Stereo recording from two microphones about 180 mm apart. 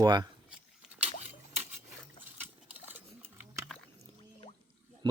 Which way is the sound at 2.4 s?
10° right (ahead or behind).